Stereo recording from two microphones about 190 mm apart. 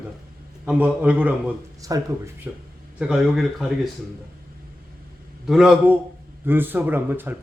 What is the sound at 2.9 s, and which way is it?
Speech, 5° right (ahead or behind).